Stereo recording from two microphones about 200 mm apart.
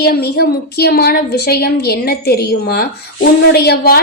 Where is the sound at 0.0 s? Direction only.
50° left (ahead or behind).